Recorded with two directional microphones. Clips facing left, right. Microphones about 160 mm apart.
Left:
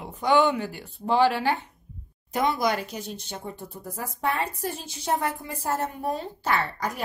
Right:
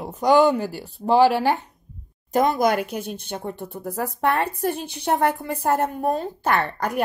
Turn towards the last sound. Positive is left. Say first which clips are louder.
# right 5 dB
turn(degrees=-60)  # may be behind; listen again after turning